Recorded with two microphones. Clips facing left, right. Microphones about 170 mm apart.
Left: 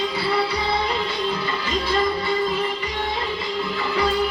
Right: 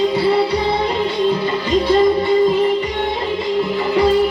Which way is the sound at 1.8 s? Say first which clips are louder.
Right 9 dB; 20° right (ahead or behind).